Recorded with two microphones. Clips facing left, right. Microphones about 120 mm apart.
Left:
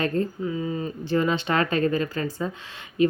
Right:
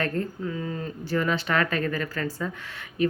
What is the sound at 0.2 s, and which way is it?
Speech, 20° left (ahead or behind).